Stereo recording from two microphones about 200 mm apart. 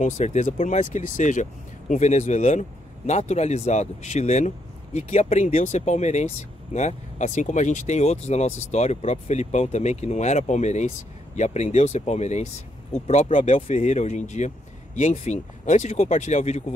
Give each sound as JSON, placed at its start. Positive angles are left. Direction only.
{"t": 0.0, "sound": "speech", "side_deg": 35}